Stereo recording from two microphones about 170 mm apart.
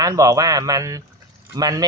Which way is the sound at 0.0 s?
20° right (ahead or behind).